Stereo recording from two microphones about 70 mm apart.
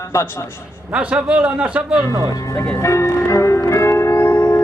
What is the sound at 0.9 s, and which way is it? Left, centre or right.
Speech, centre.